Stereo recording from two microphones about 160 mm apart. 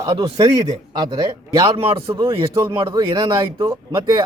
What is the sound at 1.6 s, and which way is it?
Speech, 35° right (ahead or behind).